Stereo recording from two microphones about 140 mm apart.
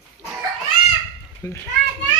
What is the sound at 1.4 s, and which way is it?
Speech, 20° left (ahead or behind).